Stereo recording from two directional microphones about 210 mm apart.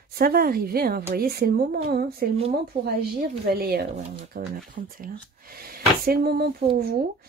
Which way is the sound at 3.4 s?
45° right (ahead or behind).